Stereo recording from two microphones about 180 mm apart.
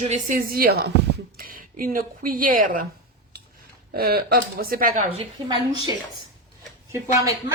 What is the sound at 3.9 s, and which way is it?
Speech, 55° right (ahead or behind).